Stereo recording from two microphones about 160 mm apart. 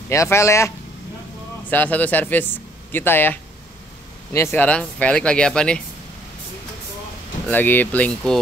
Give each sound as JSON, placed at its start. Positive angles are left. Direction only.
{"t": 0.1, "sound": "a man's voice", "side_deg": 20}
{"t": 7.4, "sound": "a man's voice", "side_deg": 10}